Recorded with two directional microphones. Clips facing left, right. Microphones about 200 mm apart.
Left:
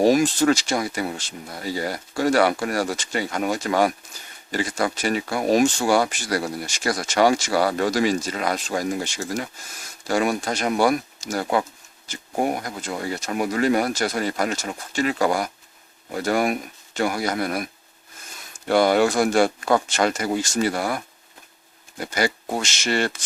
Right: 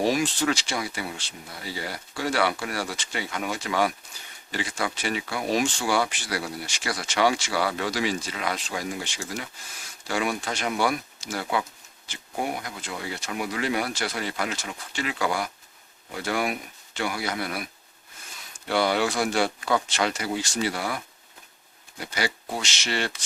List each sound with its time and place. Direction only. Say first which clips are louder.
0.0 s speech: left 7 dB; 45° left (ahead or behind)
18.7 s speech: left 6 dB; 45° left (ahead or behind)